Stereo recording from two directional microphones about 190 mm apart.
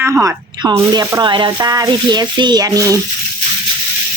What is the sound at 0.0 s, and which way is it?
Speech, 15° right (ahead or behind).